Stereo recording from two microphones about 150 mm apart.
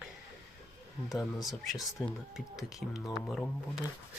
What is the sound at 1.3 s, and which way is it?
Speech, centre (ahead or behind).